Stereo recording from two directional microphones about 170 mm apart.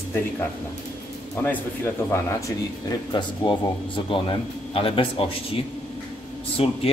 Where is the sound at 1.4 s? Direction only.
15° left (ahead or behind).